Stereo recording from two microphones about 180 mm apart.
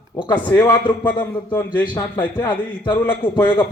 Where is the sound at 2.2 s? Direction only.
25° left (ahead or behind).